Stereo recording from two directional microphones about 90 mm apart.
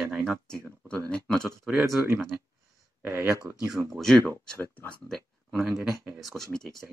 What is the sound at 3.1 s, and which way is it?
Speech, 30° right (ahead or behind).